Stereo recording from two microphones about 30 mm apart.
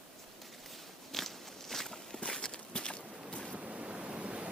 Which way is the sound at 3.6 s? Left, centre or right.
Right.